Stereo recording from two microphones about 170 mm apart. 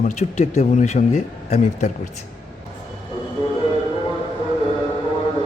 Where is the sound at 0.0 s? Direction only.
45° left (ahead or behind).